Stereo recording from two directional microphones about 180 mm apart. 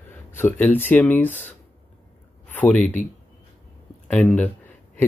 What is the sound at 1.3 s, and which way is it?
Speech, 40° left (ahead or behind).